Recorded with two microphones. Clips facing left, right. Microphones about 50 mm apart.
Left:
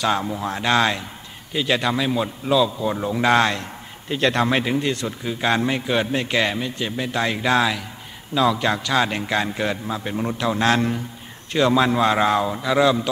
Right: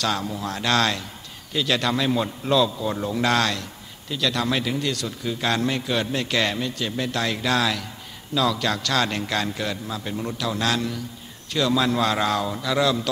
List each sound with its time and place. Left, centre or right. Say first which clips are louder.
0.0 s a man's voice: left 4 dB; left